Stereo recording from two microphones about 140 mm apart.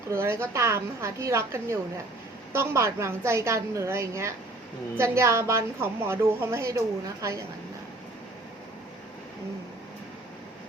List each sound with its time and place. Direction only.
0.1 s a woman's voice: 20° right (ahead or behind)